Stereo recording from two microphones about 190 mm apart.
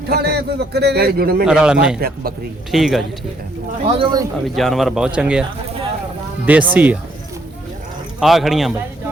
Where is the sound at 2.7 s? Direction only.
Centre (ahead or behind).